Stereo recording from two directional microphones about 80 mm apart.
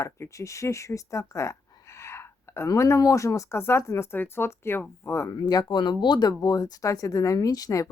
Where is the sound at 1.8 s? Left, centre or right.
Left.